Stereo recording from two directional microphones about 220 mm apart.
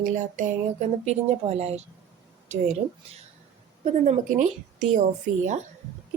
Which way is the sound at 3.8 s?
30° right (ahead or behind).